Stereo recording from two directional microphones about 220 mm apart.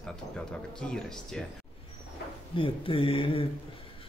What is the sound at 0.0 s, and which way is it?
Speech, 5° left (ahead or behind).